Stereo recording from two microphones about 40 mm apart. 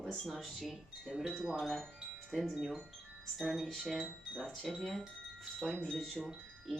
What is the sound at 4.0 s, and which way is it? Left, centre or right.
Speech, centre.